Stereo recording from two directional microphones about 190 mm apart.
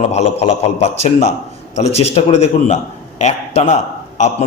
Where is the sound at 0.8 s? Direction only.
35° left (ahead or behind).